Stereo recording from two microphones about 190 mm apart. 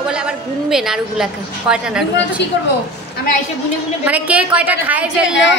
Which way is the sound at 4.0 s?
5° right (ahead or behind).